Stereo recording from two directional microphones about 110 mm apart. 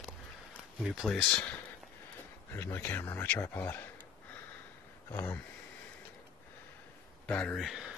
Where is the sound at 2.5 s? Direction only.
15° left (ahead or behind).